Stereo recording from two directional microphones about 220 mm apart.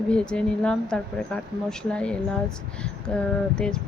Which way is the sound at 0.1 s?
5° left (ahead or behind).